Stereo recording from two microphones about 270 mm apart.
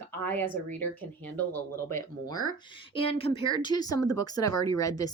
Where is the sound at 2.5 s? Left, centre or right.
Centre.